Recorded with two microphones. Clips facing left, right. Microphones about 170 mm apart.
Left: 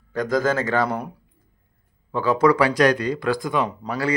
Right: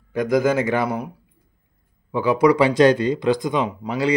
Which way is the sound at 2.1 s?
15° right (ahead or behind).